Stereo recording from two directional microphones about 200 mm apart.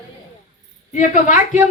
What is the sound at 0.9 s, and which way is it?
Speech, 40° left (ahead or behind).